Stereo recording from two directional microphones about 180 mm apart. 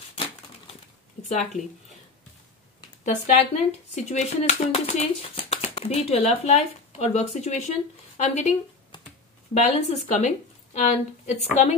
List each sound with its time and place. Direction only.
3.3 s speech: 40° left (ahead or behind)